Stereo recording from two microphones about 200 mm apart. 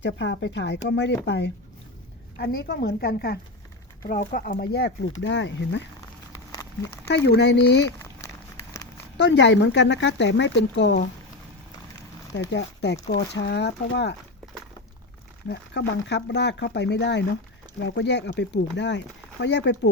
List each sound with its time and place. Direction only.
0.0 s a woman's voice: 65° left (ahead or behind); by 4.5 s 45° left (ahead or behind)
4.5 s speech: 55° left (ahead or behind)
7.3 s speech: 60° left (ahead or behind)
9.1 s speech: 60° left (ahead or behind)
12.4 s speech: 60° left (ahead or behind)
15.4 s speech: 60° left (ahead or behind)